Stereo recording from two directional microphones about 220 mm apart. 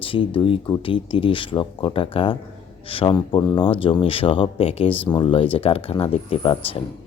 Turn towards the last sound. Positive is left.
turn(degrees=25)  # may be behind; listen again after turning